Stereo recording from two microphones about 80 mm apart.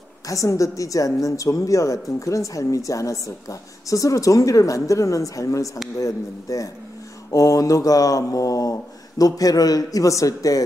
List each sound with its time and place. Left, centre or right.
0.3 s a woman's voice: left